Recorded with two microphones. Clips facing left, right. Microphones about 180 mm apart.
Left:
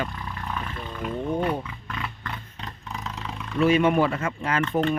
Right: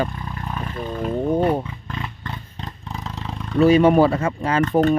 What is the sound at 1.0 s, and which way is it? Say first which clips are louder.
Roaring cats: right 6 dB; 35° right (ahead or behind).